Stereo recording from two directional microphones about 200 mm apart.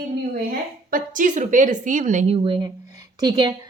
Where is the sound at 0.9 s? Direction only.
45° right (ahead or behind).